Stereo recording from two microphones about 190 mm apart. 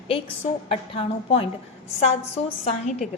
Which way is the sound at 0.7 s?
30° left (ahead or behind).